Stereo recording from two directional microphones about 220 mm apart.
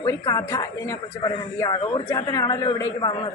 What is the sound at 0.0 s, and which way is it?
A woman's voice, 15° left (ahead or behind).